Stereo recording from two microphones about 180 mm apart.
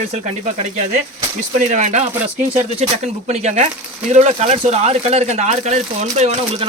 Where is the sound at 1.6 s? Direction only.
45° right (ahead or behind).